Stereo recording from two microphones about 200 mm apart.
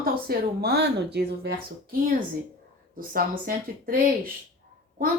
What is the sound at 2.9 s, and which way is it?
Speech, 45° right (ahead or behind).